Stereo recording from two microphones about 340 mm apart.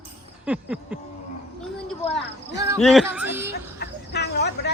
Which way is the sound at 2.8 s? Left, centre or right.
Centre.